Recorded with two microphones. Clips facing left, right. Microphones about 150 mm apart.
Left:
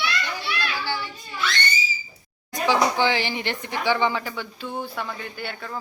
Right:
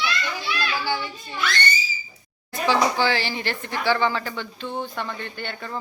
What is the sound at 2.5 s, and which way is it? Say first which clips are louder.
Speech: even; 15° left (ahead or behind).